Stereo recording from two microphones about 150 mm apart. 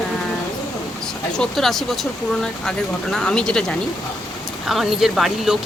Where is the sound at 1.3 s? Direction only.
5° left (ahead or behind).